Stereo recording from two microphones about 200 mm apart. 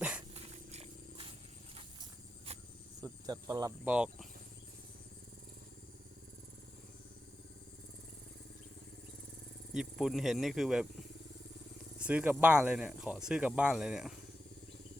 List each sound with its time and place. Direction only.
0.3 s wild animals: 30° right (ahead or behind)
3.0 s cricket: 20° right (ahead or behind)
3.8 s speech: 5° right (ahead or behind)
9.7 s speech: centre (ahead or behind)
11.9 s speech: 5° right (ahead or behind)